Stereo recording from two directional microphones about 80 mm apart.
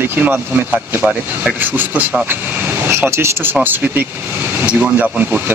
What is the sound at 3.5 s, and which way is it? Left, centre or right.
Speech, right.